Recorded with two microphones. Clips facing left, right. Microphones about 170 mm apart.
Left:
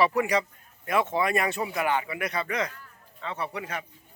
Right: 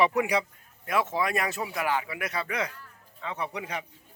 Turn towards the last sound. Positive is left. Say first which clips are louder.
# even
turn(degrees=-15)  # may be behind; listen again after turning